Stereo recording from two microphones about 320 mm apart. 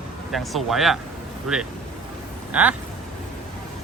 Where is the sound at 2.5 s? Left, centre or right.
Centre.